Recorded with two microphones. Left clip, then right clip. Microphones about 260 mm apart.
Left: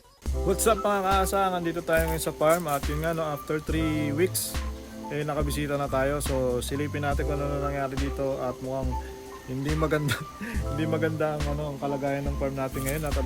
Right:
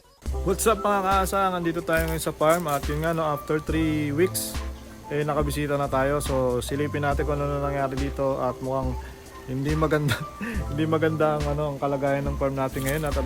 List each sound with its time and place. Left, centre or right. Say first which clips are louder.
0.4 s speech: right 1 dB; centre